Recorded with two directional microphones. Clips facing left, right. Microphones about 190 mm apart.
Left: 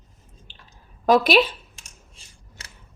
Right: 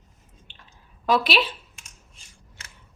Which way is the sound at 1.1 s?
45° left (ahead or behind).